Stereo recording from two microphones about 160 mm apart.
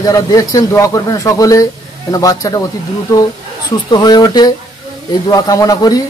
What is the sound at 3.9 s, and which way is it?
Speech, 25° left (ahead or behind).